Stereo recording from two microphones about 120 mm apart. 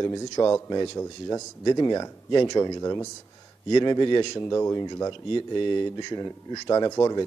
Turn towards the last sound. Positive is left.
turn(degrees=30)  # may be behind; listen again after turning